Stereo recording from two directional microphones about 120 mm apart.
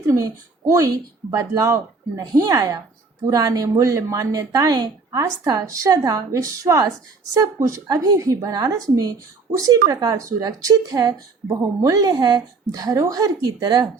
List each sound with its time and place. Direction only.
0.1 s a woman's voice: 30° right (ahead or behind)